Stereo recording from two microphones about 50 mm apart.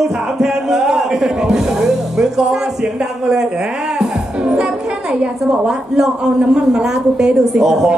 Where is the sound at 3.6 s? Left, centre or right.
Centre.